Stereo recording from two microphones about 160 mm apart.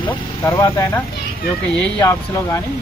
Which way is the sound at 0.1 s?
20° left (ahead or behind).